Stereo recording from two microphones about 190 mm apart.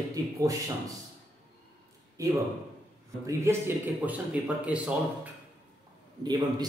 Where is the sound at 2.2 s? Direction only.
15° right (ahead or behind).